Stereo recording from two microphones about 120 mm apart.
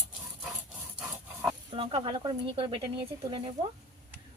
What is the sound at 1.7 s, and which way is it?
Speech, 45° right (ahead or behind).